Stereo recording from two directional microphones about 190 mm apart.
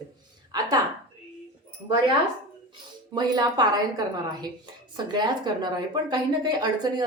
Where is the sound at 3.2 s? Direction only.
20° right (ahead or behind).